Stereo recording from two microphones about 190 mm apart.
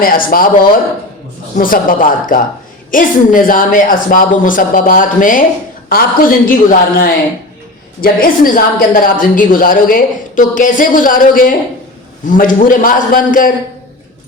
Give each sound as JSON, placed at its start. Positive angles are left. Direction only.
{"t": 0.0, "sound": "a woman's voice", "side_deg": 50}
{"t": 1.5, "sound": "a woman's voice", "side_deg": 45}